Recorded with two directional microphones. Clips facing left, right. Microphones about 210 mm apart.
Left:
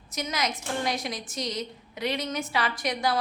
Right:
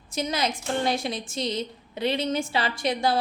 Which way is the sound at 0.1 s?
30° right (ahead or behind).